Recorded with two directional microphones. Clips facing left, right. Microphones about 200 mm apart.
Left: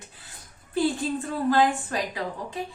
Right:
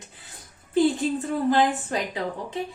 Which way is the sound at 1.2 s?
20° right (ahead or behind).